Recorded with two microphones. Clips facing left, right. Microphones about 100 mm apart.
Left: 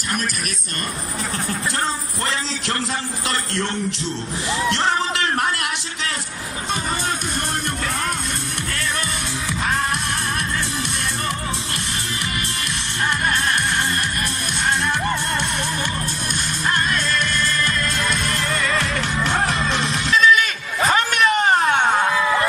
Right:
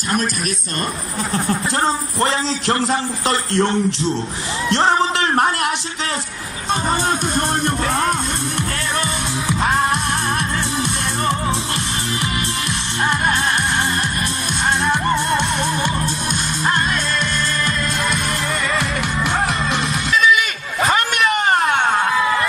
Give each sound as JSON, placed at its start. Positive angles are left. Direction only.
{"t": 1.3, "sound": "a man's voice", "side_deg": -30}
{"t": 4.6, "sound": "a sound", "side_deg": -30}
{"t": 6.7, "sound": "speech", "side_deg": -30}
{"t": 9.5, "sound": "music", "side_deg": -30}
{"t": 14.9, "sound": "music", "side_deg": -20}
{"t": 18.8, "sound": "music", "side_deg": 0}
{"t": 21.8, "sound": "a sound", "side_deg": 0}